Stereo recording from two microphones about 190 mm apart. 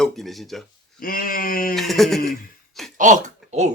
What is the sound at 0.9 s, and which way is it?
Speech, 50° left (ahead or behind).